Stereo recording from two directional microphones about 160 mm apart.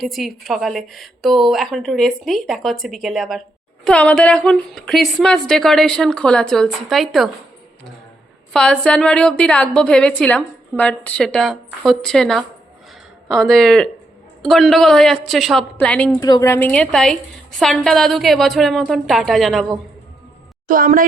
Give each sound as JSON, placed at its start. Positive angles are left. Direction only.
{"t": 0.0, "sound": "a woman's voice", "side_deg": 0}
{"t": 8.5, "sound": "a woman's voice", "side_deg": 5}
{"t": 16.2, "sound": "a woman's voice", "side_deg": 20}
{"t": 20.7, "sound": "speech", "side_deg": -60}